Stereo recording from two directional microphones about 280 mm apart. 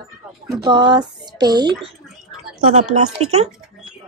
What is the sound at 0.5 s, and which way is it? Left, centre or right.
Speech, centre.